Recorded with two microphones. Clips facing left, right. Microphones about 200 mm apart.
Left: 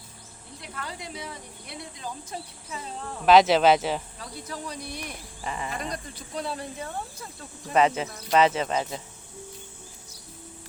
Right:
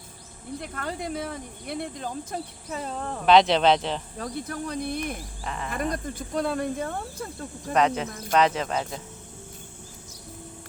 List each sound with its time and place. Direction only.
0.6 s speech: 50° right (ahead or behind)
3.2 s speech: 5° left (ahead or behind)
4.2 s speech: 55° right (ahead or behind)
5.4 s speech: 5° left (ahead or behind)
5.7 s speech: 50° right (ahead or behind)
7.7 s speech: 5° left (ahead or behind)